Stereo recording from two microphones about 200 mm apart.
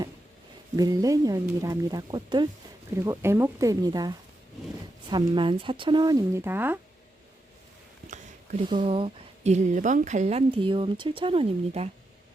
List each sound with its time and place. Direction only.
0.8 s a woman's voice: 20° right (ahead or behind)
8.7 s a woman's voice: 25° right (ahead or behind)